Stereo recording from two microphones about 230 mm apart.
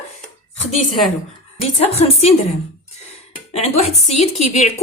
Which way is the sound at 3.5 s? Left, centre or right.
Left.